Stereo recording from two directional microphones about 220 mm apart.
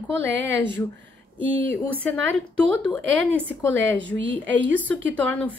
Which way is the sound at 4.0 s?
55° right (ahead or behind).